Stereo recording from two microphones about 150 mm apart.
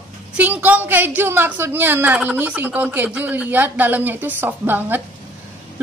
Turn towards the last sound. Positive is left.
turn(degrees=-15)  # may be behind; listen again after turning